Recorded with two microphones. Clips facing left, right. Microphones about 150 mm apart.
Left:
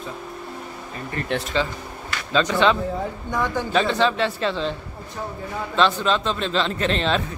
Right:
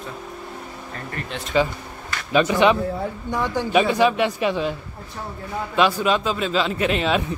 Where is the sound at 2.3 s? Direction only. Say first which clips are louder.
Right 2 dB; 15° right (ahead or behind).